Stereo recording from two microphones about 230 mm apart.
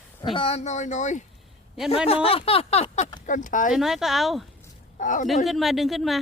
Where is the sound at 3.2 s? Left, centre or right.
Left.